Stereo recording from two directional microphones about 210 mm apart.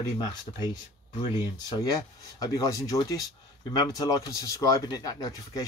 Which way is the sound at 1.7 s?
20° left (ahead or behind).